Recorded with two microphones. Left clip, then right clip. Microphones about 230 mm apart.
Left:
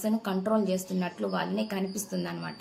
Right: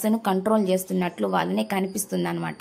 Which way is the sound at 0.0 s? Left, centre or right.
Right.